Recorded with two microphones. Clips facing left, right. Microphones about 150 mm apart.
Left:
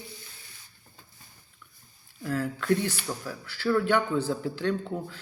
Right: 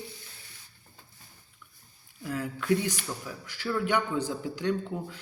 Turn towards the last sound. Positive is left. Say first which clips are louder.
# left 1 dB
turn(degrees=-15)  # may be behind; listen again after turning